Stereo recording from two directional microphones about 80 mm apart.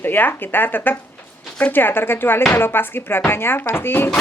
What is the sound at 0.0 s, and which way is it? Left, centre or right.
A woman's voice, left.